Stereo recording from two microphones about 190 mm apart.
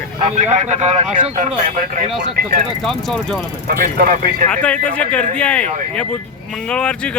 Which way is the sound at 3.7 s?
50° right (ahead or behind).